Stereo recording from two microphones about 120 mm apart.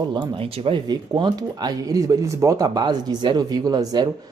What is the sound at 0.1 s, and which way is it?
Speech, 40° right (ahead or behind).